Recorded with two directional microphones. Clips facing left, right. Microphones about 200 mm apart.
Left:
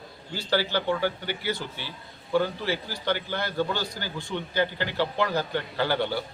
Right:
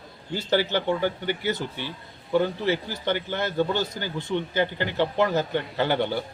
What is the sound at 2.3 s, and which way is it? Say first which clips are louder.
A man's voice: right 3 dB; 20° right (ahead or behind).